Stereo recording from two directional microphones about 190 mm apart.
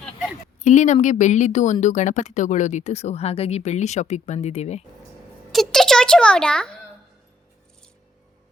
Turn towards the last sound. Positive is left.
turn(degrees=5)  # may be behind; listen again after turning